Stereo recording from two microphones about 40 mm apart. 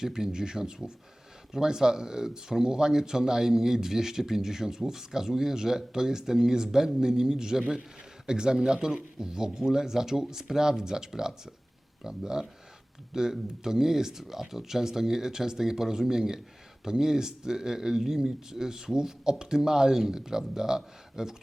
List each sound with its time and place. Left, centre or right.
0.0 s speech: centre